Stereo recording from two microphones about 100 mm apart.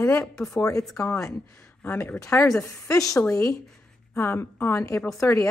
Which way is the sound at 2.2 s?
30° left (ahead or behind).